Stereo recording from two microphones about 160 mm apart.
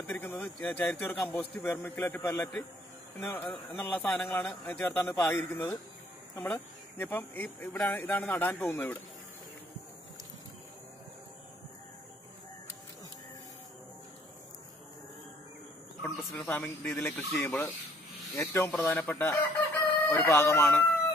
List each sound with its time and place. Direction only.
0.0 s speech: 15° left (ahead or behind)
16.0 s speech: 5° left (ahead or behind)